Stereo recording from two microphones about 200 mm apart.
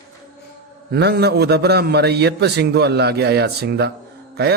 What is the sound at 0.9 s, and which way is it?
A man's voice, 55° right (ahead or behind).